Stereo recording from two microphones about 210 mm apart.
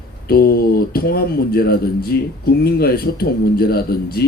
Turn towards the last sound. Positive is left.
turn(degrees=45)  # may be behind; listen again after turning